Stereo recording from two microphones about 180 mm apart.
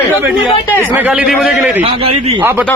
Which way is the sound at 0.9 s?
10° right (ahead or behind).